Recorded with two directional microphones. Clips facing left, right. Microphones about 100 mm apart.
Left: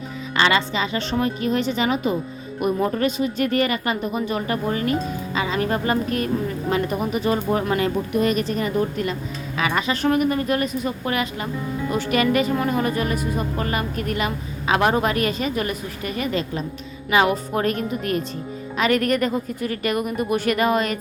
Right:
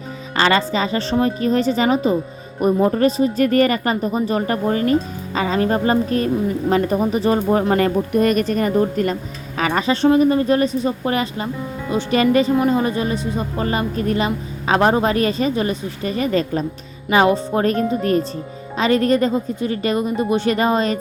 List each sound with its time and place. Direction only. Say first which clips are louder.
0.3 s speech: right 3 dB; 40° right (ahead or behind)